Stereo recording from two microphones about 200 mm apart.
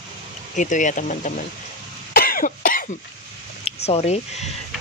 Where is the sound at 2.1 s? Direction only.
45° left (ahead or behind).